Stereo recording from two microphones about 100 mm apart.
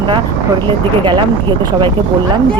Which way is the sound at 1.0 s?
50° right (ahead or behind).